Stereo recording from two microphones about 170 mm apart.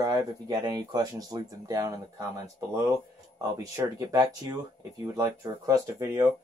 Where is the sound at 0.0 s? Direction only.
20° right (ahead or behind).